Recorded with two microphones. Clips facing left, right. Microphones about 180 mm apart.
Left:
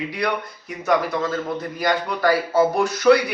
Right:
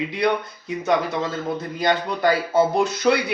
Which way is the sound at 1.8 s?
20° right (ahead or behind).